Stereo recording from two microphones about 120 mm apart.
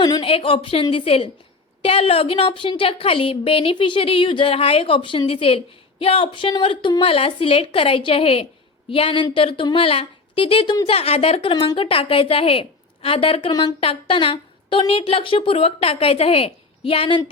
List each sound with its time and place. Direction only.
0.0 s a woman's voice: 40° left (ahead or behind)
13.5 s a sound: 35° left (ahead or behind)
13.7 s speech: 50° left (ahead or behind)